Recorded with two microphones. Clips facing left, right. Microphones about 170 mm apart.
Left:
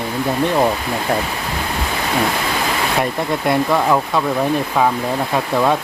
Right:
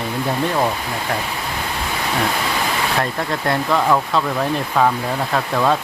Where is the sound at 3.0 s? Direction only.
10° left (ahead or behind).